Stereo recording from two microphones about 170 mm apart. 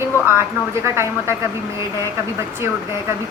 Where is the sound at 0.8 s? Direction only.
15° right (ahead or behind).